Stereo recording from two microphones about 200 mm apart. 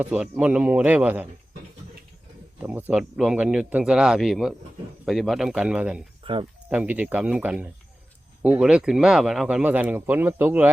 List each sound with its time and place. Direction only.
0.0 s speech: 5° right (ahead or behind)
2.6 s speech: 10° right (ahead or behind)
6.3 s speech: 25° right (ahead or behind)
6.7 s speech: 5° right (ahead or behind)